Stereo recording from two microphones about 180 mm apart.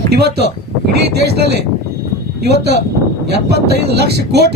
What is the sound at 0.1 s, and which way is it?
Speech, 65° right (ahead or behind).